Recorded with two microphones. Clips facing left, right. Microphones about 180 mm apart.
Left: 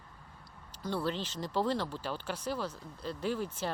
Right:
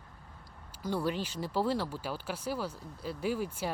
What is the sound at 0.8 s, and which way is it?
Speech, 10° right (ahead or behind).